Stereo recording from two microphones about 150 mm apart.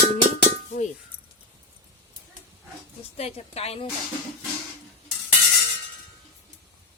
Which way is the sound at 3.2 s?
45° left (ahead or behind).